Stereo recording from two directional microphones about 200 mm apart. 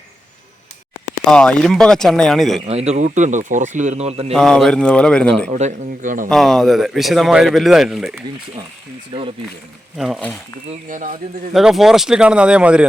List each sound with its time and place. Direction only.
1.2 s speech: 5° left (ahead or behind)
2.6 s speech: 30° right (ahead or behind)
4.3 s speech: centre (ahead or behind)
5.5 s speech: 35° right (ahead or behind)
6.2 s speech: centre (ahead or behind)
10.0 s speech: centre (ahead or behind)
10.7 s speech: 40° right (ahead or behind)
11.5 s speech: centre (ahead or behind)